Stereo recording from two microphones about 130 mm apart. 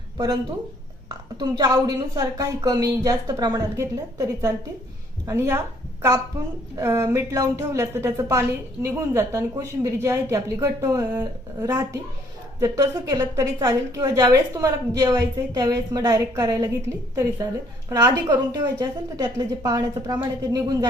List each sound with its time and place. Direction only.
1.4 s a woman's voice: 30° right (ahead or behind)
6.7 s a woman's voice: 25° right (ahead or behind)
17.8 s a woman's voice: 25° right (ahead or behind)